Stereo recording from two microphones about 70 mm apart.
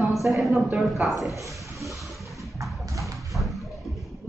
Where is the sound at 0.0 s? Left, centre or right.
Centre.